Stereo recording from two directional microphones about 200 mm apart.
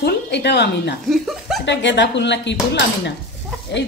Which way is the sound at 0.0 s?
60° left (ahead or behind).